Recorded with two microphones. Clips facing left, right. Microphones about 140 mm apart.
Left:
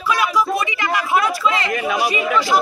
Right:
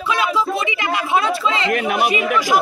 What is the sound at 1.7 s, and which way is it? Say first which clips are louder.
Speech: right 2 dB; 65° right (ahead or behind).